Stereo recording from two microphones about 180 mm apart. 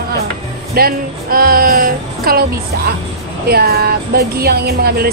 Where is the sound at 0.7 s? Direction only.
55° right (ahead or behind).